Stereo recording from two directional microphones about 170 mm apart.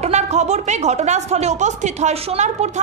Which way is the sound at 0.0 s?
40° right (ahead or behind).